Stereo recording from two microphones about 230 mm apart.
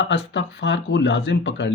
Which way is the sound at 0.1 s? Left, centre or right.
Left.